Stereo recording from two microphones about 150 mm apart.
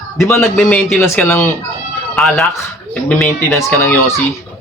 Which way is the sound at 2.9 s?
5° left (ahead or behind).